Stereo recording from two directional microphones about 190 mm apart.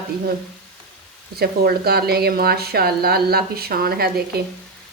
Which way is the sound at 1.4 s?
55° right (ahead or behind).